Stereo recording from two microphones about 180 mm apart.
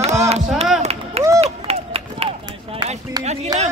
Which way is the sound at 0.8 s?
35° right (ahead or behind).